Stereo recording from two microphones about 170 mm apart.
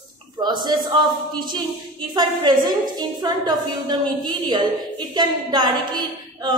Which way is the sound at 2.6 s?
25° right (ahead or behind).